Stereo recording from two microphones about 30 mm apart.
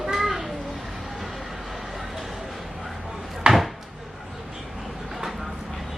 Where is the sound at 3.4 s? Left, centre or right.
Right.